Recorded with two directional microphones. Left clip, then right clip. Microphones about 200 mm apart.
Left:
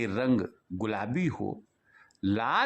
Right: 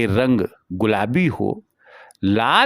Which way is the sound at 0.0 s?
35° right (ahead or behind).